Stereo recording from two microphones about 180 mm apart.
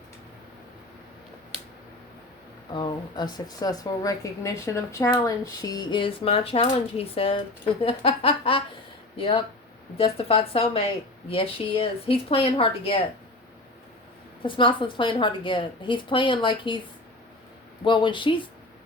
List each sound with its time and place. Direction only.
2.7 s a woman's voice: 25° left (ahead or behind)
14.4 s a woman's voice: 30° left (ahead or behind)
17.8 s a woman's voice: 25° left (ahead or behind)